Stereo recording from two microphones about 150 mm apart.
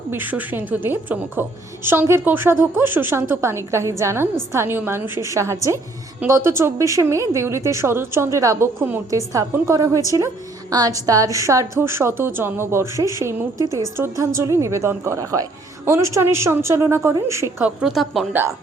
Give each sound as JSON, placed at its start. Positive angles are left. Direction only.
{"t": 0.1, "sound": "a woman's voice", "side_deg": -10}
{"t": 17.6, "sound": "speech", "side_deg": -5}